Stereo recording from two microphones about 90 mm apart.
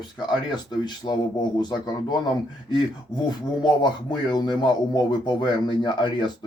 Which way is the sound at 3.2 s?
55° left (ahead or behind).